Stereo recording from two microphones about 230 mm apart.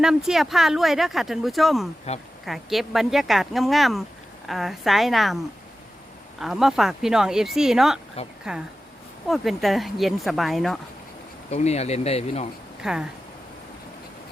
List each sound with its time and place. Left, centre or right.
0.0 s speech: centre
6.4 s speech: centre
11.5 s speech: left
12.8 s speech: centre